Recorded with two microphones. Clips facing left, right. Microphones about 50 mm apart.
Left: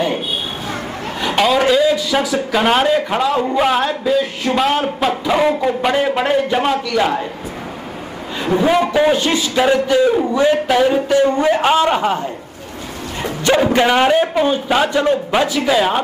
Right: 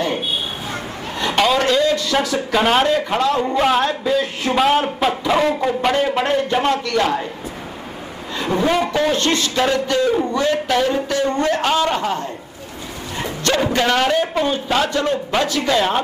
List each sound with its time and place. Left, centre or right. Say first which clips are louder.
1.2 s a man's voice: left 2 dB; centre
8.4 s a man's voice: left 3 dB; centre
13.4 s a man's voice: left 5 dB; centre